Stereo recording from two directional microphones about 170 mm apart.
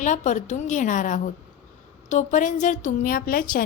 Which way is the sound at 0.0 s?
45° left (ahead or behind).